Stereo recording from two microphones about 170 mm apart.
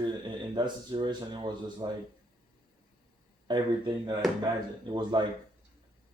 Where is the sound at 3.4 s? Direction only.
25° right (ahead or behind).